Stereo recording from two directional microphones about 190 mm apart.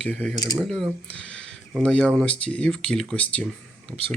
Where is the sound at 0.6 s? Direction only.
Centre (ahead or behind).